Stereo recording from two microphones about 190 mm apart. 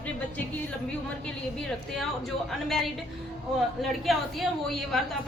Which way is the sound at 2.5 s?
Centre (ahead or behind).